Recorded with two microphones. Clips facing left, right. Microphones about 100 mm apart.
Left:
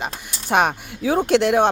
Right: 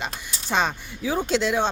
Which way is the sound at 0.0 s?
60° left (ahead or behind).